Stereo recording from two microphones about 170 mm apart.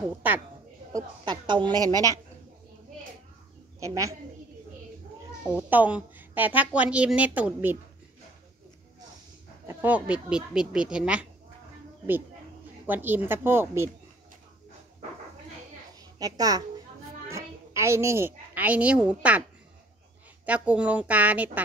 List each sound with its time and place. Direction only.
0.9 s a woman's voice: 25° right (ahead or behind)
3.8 s a woman's voice: 20° right (ahead or behind)
5.7 s a woman's voice: 10° right (ahead or behind)
9.7 s a woman's voice: 10° right (ahead or behind)
12.8 s a woman's voice: 10° right (ahead or behind)
16.2 s a woman's voice: 20° right (ahead or behind)
20.4 s a woman's voice: 10° right (ahead or behind)